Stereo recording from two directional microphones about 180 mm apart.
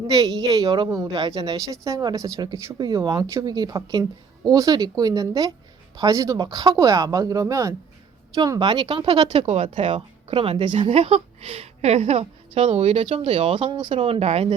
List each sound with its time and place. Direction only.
0.1 s a woman's voice: 20° right (ahead or behind)